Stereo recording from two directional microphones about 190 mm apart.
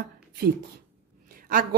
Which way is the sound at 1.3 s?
45° right (ahead or behind).